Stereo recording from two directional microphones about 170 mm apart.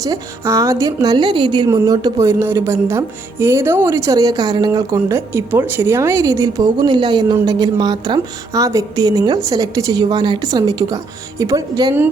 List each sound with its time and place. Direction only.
0.0 s a woman's voice: 20° right (ahead or behind)